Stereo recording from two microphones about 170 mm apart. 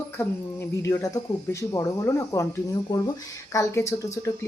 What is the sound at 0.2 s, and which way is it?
Speech, 15° left (ahead or behind).